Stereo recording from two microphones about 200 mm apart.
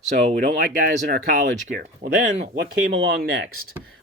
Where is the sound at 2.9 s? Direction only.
55° right (ahead or behind).